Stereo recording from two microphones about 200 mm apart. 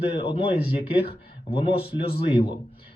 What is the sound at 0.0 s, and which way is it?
Speech, 25° left (ahead or behind).